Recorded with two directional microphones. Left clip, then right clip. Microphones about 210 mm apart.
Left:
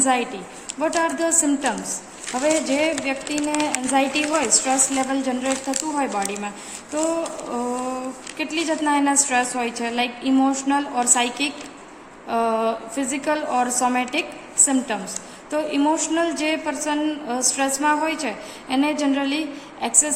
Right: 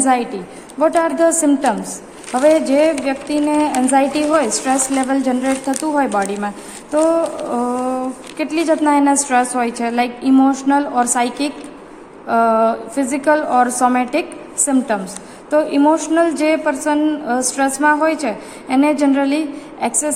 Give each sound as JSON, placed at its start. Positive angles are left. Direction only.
{"t": 0.8, "sound": "speech", "side_deg": -15}